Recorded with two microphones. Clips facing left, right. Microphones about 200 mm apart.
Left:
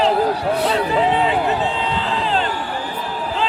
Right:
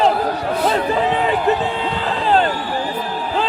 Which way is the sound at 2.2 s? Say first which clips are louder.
Right 8 dB; 45° right (ahead or behind).